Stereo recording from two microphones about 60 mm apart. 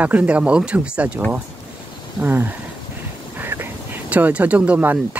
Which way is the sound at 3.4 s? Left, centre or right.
Right.